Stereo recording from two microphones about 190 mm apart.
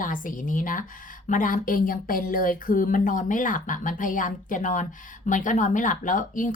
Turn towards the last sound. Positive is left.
turn(degrees=45)  # may be behind; listen again after turning